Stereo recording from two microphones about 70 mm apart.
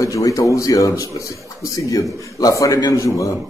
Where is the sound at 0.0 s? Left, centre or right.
Left.